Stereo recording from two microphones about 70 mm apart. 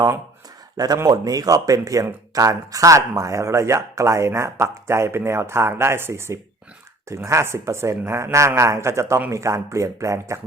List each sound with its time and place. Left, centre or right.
1.0 s speech: right